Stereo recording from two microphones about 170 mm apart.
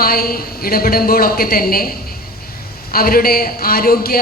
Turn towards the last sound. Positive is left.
turn(degrees=60)  # may be behind; listen again after turning